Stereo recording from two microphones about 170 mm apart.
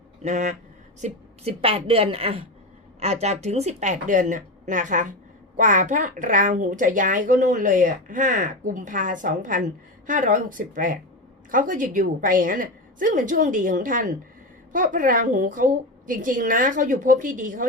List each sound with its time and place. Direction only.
0.2 s speech: 45° right (ahead or behind)
1.0 s a woman's voice: 35° right (ahead or behind); by 17.7 s 50° right (ahead or behind)